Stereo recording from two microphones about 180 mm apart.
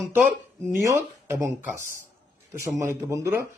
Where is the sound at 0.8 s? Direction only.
15° right (ahead or behind).